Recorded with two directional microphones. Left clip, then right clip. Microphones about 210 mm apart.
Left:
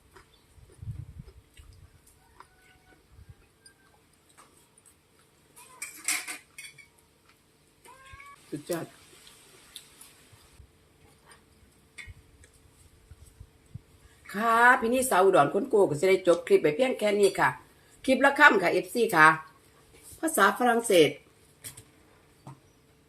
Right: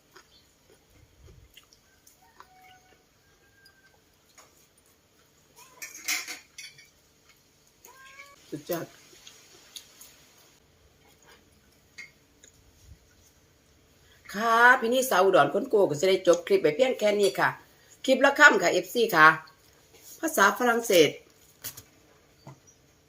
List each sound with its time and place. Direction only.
14.3 s speech: 10° right (ahead or behind)